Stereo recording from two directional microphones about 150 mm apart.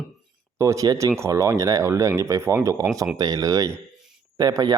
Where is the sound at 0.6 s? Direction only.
20° right (ahead or behind).